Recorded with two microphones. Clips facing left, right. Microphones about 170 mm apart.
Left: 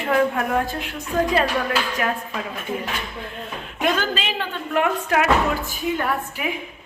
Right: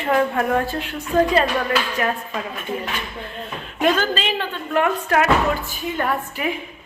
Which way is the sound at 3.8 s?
10° left (ahead or behind).